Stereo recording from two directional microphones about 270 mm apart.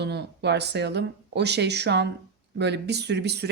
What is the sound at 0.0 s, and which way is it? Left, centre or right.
Speech, right.